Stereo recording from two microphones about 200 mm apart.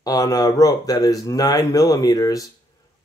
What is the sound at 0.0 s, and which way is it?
Speech, 15° left (ahead or behind).